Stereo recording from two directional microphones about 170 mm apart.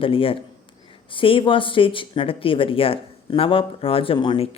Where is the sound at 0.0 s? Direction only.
30° left (ahead or behind).